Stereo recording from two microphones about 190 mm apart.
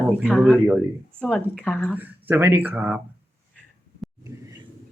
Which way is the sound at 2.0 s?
10° right (ahead or behind).